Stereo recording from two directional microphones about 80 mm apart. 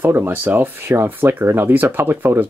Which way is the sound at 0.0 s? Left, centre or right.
Right.